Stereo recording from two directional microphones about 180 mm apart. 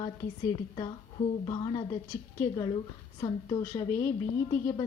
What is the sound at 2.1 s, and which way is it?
Speech, 15° left (ahead or behind).